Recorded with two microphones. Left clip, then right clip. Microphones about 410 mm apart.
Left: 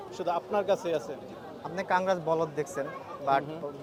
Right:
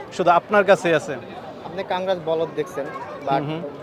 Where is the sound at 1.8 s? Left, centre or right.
Left.